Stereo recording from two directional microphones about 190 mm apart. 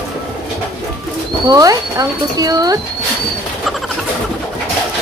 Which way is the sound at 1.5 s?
20° right (ahead or behind).